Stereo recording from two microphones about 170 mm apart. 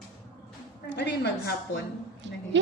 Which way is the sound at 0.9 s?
80° left.